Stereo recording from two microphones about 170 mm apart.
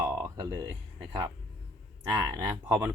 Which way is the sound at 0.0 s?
20° right (ahead or behind).